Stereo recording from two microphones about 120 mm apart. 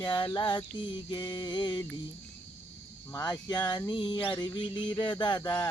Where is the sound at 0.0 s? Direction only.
40° left (ahead or behind).